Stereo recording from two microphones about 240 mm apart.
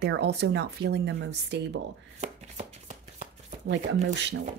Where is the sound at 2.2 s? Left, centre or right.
Right.